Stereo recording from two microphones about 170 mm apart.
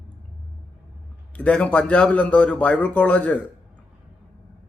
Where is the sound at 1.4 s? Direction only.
10° left (ahead or behind).